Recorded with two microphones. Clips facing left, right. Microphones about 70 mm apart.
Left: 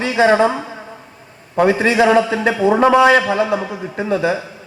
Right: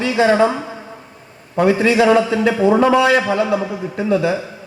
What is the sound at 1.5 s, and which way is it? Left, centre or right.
A man's voice, left.